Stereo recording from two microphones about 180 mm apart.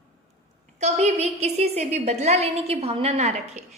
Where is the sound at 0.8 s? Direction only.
40° right (ahead or behind).